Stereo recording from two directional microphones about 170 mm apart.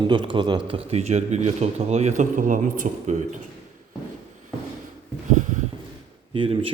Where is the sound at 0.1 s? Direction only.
25° right (ahead or behind); by 3.2 s 50° right (ahead or behind).